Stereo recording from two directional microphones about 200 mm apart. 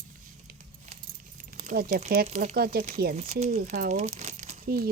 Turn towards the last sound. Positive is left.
turn(degrees=-45)  # may be behind; listen again after turning